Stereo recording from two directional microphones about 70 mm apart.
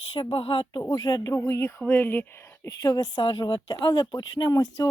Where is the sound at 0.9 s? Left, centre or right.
Left.